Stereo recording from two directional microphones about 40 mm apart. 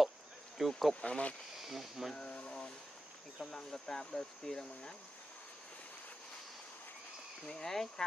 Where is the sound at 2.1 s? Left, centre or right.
Left.